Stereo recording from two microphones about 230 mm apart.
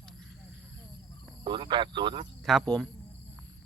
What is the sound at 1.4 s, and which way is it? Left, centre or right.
Speech, centre.